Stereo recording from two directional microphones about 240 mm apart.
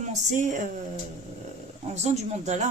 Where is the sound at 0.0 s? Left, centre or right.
Right.